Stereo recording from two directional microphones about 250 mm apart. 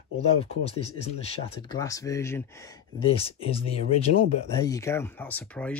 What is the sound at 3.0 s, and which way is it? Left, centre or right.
Speech, left.